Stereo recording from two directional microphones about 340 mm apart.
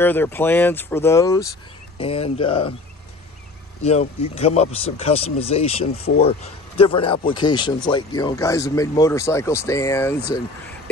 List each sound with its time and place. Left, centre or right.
0.0 s speech: centre
3.8 s speech: centre